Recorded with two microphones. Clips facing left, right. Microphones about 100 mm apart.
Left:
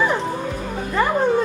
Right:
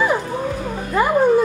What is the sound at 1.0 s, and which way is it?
Dog, 10° right (ahead or behind).